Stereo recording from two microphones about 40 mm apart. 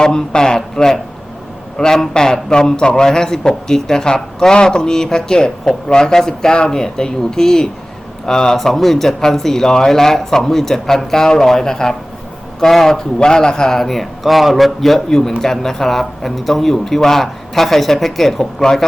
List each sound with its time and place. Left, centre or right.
0.0 s a man's voice: centre
8.5 s a man's voice: centre
13.7 s a man's voice: centre